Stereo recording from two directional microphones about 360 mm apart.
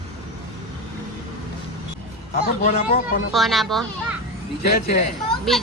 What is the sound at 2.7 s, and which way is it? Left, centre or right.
Speech, centre.